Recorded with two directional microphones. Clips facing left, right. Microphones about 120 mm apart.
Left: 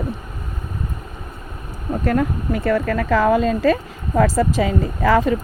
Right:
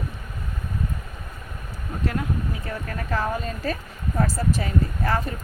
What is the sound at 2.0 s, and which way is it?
Speech, 50° left (ahead or behind).